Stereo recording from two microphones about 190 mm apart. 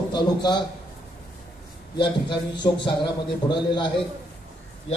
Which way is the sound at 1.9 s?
25° left (ahead or behind).